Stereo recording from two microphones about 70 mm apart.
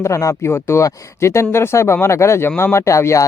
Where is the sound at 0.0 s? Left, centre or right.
Left.